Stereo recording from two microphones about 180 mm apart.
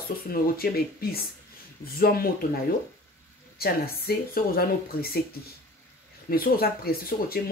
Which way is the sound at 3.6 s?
55° left (ahead or behind).